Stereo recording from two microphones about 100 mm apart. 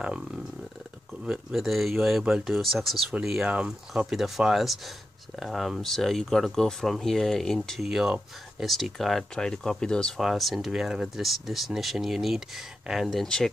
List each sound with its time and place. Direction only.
1.2 s speech: 5° right (ahead or behind)